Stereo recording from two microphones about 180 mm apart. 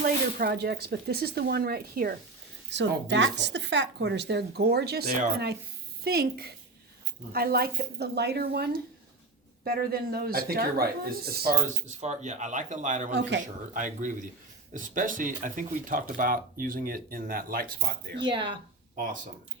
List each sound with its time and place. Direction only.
0.3 s speech: 55° right (ahead or behind)
2.6 s a woman's voice: 80° right; by 11.5 s 55° right (ahead or behind)
11.9 s speech: 40° right (ahead or behind)
13.1 s speech: 80° right
13.7 s speech: 45° right (ahead or behind); by 18.3 s 65° right (ahead or behind)
18.3 s speech: 25° right (ahead or behind)